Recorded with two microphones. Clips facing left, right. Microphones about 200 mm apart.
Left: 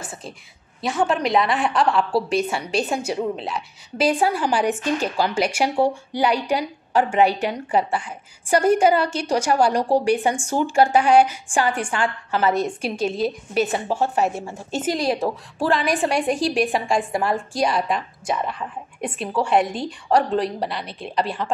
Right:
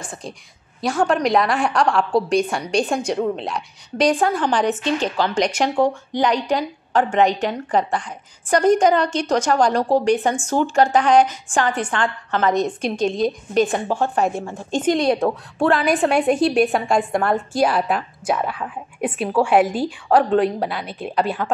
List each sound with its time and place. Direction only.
0.0 s a woman's voice: 5° left (ahead or behind)